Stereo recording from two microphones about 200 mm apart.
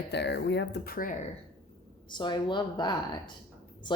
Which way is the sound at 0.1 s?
60° left (ahead or behind).